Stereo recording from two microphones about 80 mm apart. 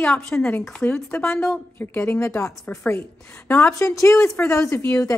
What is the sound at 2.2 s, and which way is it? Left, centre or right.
Speech, left.